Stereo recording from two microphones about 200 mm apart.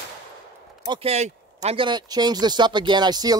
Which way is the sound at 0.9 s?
30° right (ahead or behind).